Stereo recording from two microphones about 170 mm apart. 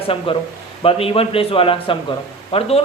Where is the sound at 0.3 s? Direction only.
30° left (ahead or behind).